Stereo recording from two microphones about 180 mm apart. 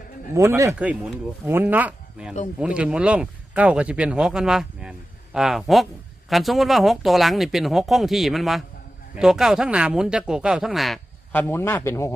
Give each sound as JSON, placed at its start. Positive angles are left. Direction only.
{"t": 0.3, "sound": "speech", "side_deg": -15}